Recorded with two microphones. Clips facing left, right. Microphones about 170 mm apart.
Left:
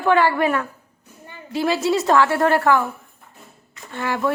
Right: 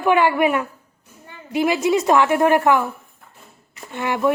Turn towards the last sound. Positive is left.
turn(degrees=-15)  # may be behind; listen again after turning